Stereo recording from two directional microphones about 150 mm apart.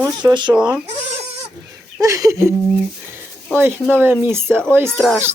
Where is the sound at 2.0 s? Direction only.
20° right (ahead or behind).